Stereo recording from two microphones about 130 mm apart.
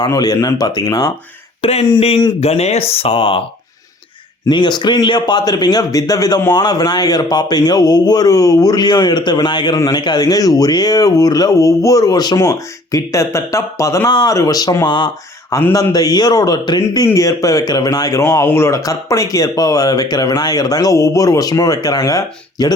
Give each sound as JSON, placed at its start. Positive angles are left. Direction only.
{"t": 0.0, "sound": "a man's voice", "side_deg": 30}
{"t": 1.6, "sound": "speech", "side_deg": 45}
{"t": 4.4, "sound": "a man's voice", "side_deg": 35}
{"t": 14.1, "sound": "a man's voice", "side_deg": 35}
{"t": 15.4, "sound": "a man's voice", "side_deg": 25}